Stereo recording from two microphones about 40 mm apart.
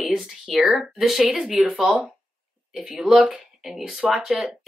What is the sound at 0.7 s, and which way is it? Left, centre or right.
Speech, centre.